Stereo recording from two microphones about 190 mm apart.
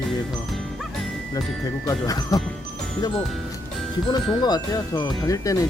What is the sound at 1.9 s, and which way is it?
Speech, 20° left (ahead or behind).